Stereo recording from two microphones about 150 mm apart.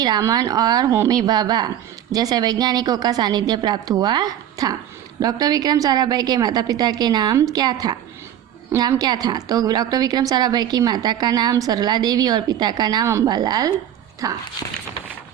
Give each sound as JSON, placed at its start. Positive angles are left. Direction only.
{"t": 0.0, "sound": "a woman's voice", "side_deg": -25}